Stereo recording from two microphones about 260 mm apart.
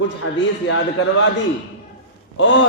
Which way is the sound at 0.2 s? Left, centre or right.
Left.